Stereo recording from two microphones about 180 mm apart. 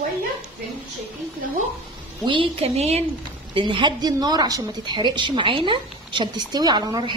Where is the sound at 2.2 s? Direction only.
30° right (ahead or behind).